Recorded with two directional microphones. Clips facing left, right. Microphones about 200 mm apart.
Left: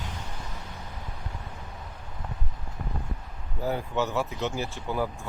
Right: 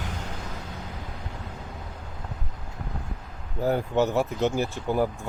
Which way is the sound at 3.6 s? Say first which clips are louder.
Right 5 dB; 50° right (ahead or behind).